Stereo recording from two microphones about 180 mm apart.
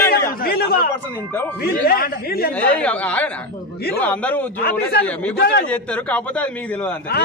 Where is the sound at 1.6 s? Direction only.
55° left (ahead or behind).